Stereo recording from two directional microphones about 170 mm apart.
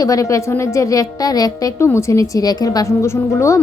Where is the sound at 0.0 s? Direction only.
20° left (ahead or behind).